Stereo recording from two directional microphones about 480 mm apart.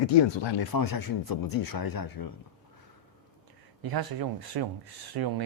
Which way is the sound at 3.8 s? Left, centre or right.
Right.